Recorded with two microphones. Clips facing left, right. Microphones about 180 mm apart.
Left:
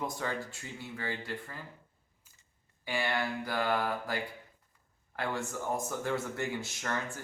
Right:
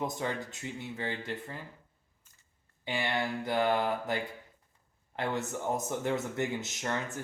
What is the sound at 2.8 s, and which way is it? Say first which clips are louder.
Speech: right 1 dB; 20° right (ahead or behind).